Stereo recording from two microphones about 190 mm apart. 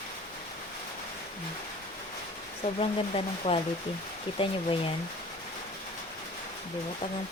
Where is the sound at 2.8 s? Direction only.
30° left (ahead or behind).